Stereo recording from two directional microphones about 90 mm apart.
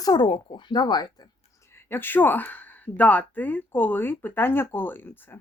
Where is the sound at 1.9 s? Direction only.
25° left (ahead or behind).